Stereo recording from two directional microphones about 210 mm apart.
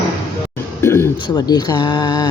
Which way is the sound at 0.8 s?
10° left (ahead or behind).